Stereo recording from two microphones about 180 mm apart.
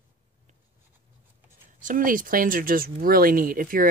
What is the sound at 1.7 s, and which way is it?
Speech, 50° right (ahead or behind).